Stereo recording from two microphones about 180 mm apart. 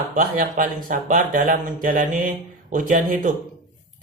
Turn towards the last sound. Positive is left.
turn(degrees=-45)  # may be behind; listen again after turning